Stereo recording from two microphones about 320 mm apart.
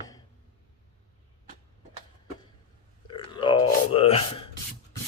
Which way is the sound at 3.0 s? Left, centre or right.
Centre.